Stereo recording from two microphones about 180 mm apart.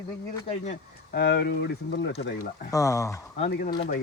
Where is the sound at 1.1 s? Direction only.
65° left (ahead or behind).